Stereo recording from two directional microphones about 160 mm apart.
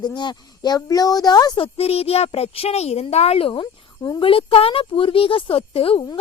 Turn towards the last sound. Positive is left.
turn(degrees=35)  # may be behind; listen again after turning